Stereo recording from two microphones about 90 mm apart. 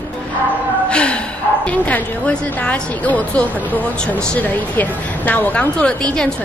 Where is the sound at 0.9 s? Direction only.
10° left (ahead or behind).